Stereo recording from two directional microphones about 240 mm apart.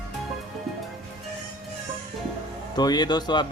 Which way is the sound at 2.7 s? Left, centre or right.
Centre.